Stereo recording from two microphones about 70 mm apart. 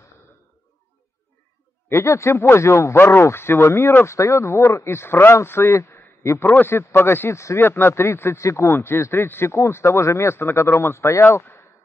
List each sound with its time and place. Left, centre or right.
1.9 s a man's voice: left